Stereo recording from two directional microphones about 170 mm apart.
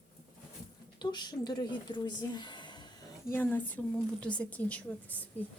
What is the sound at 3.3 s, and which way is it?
Speech, 10° left (ahead or behind).